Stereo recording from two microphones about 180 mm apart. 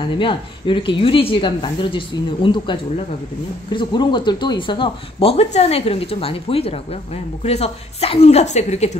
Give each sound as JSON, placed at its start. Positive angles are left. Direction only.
{"t": 0.2, "sound": "speech", "side_deg": 25}